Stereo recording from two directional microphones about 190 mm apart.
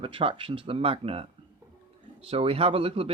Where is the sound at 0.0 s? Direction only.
30° right (ahead or behind).